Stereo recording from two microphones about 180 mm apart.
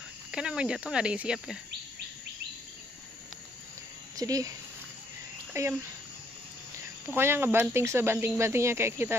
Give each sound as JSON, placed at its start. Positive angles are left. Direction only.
{"t": 0.3, "sound": "speech", "side_deg": -5}
{"t": 4.2, "sound": "a child's voice", "side_deg": -20}
{"t": 7.1, "sound": "speech", "side_deg": -10}